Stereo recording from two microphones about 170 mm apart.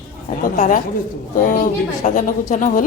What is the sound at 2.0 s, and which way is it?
Speech, 50° left (ahead or behind).